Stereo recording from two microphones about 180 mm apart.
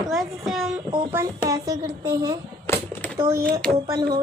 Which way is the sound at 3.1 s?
15° right (ahead or behind).